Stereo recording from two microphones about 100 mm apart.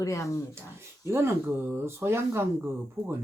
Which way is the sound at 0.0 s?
30° left (ahead or behind).